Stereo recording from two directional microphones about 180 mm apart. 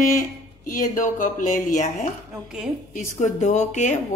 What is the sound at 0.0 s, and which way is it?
Speech, 45° left (ahead or behind).